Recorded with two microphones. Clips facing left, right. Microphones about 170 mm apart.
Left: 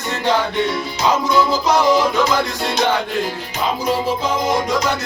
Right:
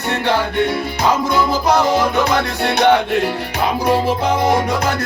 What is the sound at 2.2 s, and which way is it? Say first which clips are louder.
Music: right 2 dB; 60° right (ahead or behind).